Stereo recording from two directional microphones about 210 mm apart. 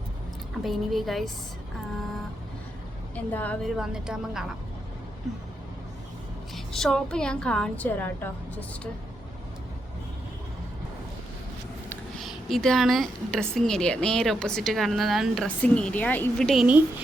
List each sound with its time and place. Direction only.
0.6 s a woman's voice: centre (ahead or behind)
3.3 s a woman's voice: 5° left (ahead or behind)
6.7 s a woman's voice: 5° left (ahead or behind)
11.9 s a sound: centre (ahead or behind)
13.5 s a woman's voice: centre (ahead or behind)